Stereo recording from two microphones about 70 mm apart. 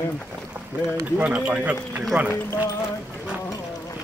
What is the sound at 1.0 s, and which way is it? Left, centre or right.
Speech, right.